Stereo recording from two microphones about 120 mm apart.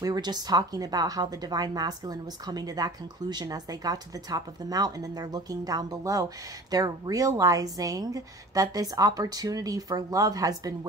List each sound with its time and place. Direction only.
0.0 s a woman's voice: 35° right (ahead or behind)